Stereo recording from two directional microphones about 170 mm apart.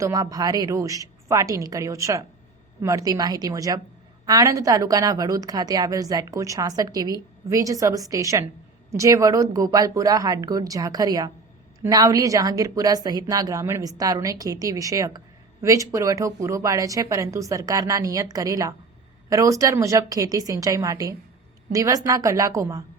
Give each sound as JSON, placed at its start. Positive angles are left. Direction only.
{"t": 0.0, "sound": "a woman's voice", "side_deg": -20}